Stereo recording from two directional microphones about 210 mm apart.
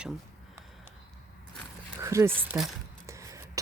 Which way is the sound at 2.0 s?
15° right (ahead or behind).